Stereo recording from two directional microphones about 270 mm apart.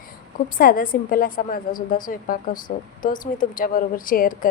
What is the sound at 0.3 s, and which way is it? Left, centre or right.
Speech, left.